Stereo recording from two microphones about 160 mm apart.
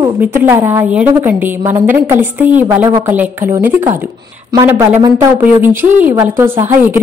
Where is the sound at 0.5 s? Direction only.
15° right (ahead or behind).